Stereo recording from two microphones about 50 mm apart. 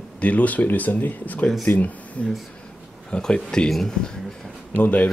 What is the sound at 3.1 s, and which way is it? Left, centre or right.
Speech, centre.